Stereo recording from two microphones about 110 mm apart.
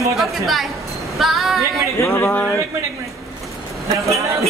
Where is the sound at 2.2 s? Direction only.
10° left (ahead or behind).